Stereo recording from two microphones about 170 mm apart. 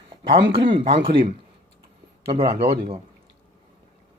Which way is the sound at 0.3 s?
30° right (ahead or behind).